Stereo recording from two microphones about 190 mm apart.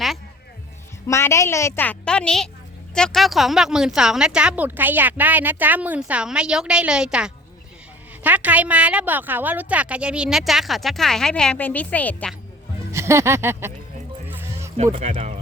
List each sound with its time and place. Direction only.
1.0 s a woman's voice: 15° left (ahead or behind)
12.9 s speech: 15° right (ahead or behind)
14.3 s music: 10° right (ahead or behind)
14.9 s speech: 35° right (ahead or behind)